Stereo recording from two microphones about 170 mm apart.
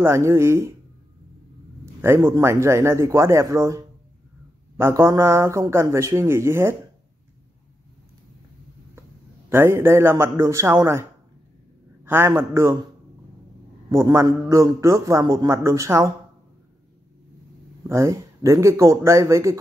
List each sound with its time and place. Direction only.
0.0 s a man's voice: 15° right (ahead or behind)
2.0 s a man's voice: 15° right (ahead or behind)
9.5 s a man's voice: 15° right (ahead or behind)
13.8 s a man's voice: 20° right (ahead or behind)
17.8 s a man's voice: 15° right (ahead or behind)